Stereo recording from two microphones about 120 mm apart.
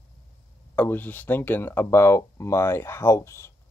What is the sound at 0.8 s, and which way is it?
Speech, 15° left (ahead or behind).